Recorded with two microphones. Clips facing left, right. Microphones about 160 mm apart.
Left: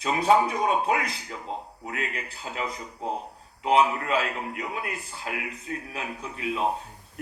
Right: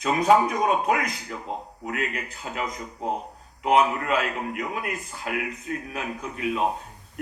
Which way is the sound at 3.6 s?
30° left (ahead or behind).